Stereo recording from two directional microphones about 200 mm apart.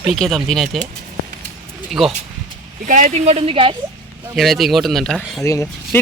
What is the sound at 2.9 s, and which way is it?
Speech, 40° right (ahead or behind).